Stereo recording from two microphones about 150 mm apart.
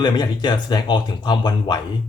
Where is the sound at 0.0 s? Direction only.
30° left (ahead or behind).